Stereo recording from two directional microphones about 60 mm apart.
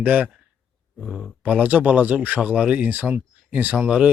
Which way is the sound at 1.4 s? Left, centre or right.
Right.